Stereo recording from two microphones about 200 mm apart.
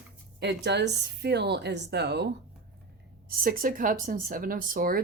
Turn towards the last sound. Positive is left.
turn(degrees=-45)  # may be behind; listen again after turning